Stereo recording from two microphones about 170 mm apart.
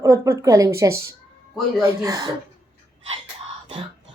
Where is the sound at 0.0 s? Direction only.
15° right (ahead or behind).